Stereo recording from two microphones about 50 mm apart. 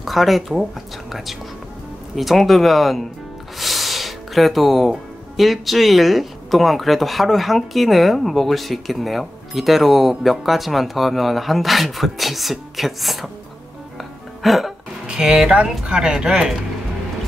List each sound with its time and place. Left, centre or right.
0.0 s speech: centre
2.1 s speech: centre
3.5 s music: centre
5.4 s speech: centre
13.9 s music: centre
15.0 s speech: centre